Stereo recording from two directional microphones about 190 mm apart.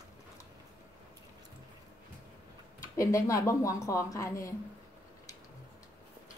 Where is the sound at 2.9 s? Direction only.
15° left (ahead or behind).